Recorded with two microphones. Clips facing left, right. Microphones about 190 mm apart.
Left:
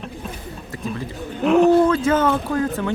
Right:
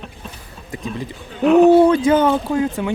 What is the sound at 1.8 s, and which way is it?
Speech, 15° right (ahead or behind).